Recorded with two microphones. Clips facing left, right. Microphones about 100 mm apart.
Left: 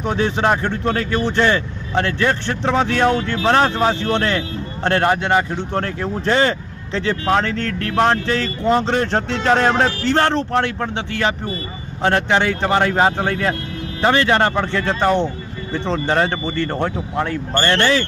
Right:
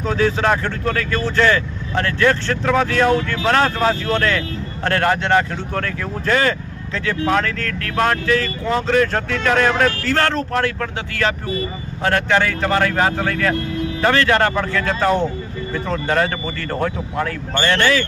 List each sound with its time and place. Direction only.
0.0 s speech: 20° left (ahead or behind)
5.8 s speech: 25° left (ahead or behind)